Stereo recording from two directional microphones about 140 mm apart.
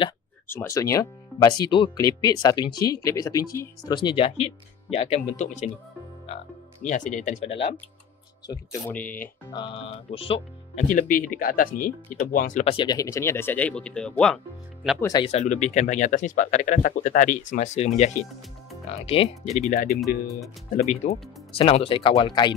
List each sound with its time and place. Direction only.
0.5 s speech: 20° left (ahead or behind)
3.9 s speech: 35° left (ahead or behind); by 7.4 s 60° left (ahead or behind)
7.4 s speech: 40° left (ahead or behind)
9.5 s speech: 35° left (ahead or behind)
10.9 s speech: 80° left
12.6 s speech: 35° left (ahead or behind)
12.9 s speech: 20° left (ahead or behind); by 15.0 s 5° left (ahead or behind)
15.0 s speech: 25° left (ahead or behind)
15.2 s speech: 55° left (ahead or behind); by 22.5 s 30° left (ahead or behind)